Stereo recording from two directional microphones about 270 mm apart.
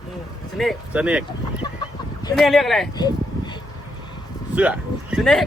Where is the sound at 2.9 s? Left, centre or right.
Centre.